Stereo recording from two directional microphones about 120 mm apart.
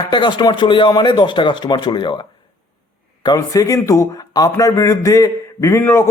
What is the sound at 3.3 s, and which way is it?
A man's voice, 25° left (ahead or behind).